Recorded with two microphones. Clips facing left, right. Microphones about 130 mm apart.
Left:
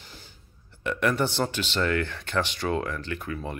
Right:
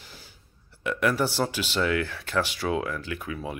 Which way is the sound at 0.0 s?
5° right (ahead or behind).